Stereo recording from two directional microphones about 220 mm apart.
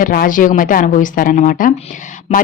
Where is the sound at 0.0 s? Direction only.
40° left (ahead or behind).